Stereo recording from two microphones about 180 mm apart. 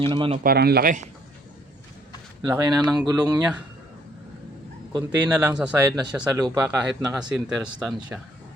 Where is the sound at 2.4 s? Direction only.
20° right (ahead or behind).